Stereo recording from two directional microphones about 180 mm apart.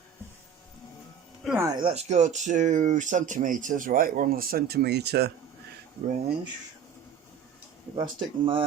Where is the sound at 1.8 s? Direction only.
35° right (ahead or behind); by 5.3 s 65° right (ahead or behind).